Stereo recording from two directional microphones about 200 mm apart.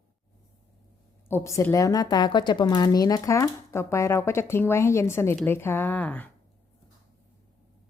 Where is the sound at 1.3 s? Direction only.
15° left (ahead or behind).